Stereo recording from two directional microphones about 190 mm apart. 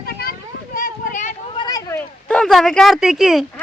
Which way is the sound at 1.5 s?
20° left (ahead or behind).